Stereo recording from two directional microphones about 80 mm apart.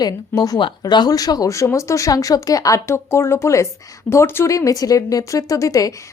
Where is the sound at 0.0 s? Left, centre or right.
Left.